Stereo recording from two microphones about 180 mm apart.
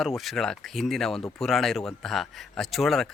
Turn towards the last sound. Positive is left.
turn(degrees=0)  # may be behind; listen again after turning